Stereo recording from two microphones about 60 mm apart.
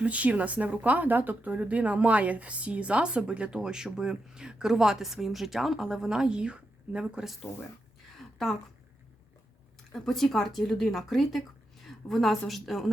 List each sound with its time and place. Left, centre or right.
0.0 s speech: right
9.9 s a woman's voice: centre